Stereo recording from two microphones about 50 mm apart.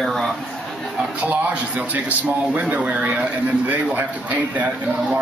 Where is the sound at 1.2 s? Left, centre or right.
Right.